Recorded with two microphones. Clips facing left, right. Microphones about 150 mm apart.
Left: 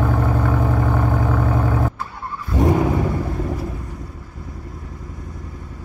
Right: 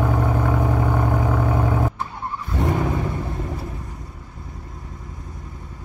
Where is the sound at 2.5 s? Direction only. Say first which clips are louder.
Left 6 dB; 15° left (ahead or behind).